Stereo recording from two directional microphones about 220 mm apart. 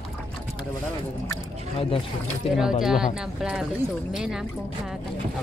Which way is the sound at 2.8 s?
Centre (ahead or behind).